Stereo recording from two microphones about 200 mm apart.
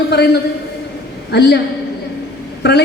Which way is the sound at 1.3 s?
55° left (ahead or behind).